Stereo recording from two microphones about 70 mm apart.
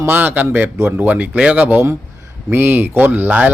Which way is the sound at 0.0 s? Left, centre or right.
Right.